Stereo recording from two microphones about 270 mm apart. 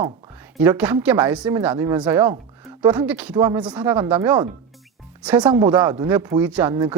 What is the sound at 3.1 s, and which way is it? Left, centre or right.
Speech, centre.